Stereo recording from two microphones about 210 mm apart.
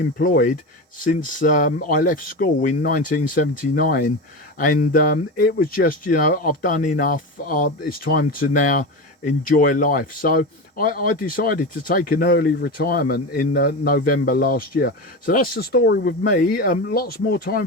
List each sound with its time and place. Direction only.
0.2 s speech: 45° left (ahead or behind)